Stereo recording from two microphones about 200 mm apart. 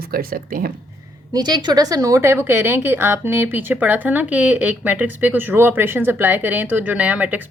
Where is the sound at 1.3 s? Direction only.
20° right (ahead or behind).